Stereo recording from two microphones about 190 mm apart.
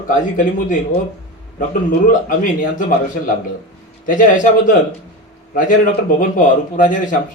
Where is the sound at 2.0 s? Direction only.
45° left (ahead or behind).